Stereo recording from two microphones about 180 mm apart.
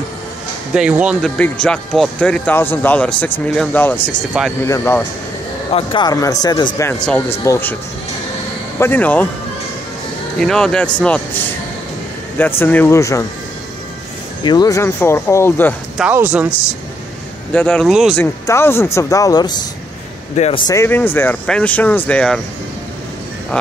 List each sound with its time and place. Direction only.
0.7 s speech: 5° right (ahead or behind)
1.4 s speech: 5° left (ahead or behind)
5.7 s speech: 30° left (ahead or behind); by 7.7 s 15° left (ahead or behind)
8.7 s speech: 10° left (ahead or behind)
10.4 s speech: 5° left (ahead or behind)
12.4 s speech: 10° left (ahead or behind)
14.4 s speech: 25° left (ahead or behind)
16.0 s speech: 10° right (ahead or behind)
17.5 s speech: 5° left (ahead or behind)
18.2 s speech: 15° left (ahead or behind)
20.3 s speech: 35° left (ahead or behind)
20.6 s speech: 15° left (ahead or behind)
23.5 s speech: 5° left (ahead or behind)